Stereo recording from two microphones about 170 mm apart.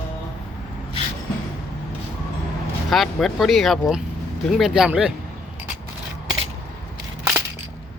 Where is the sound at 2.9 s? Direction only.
Centre (ahead or behind).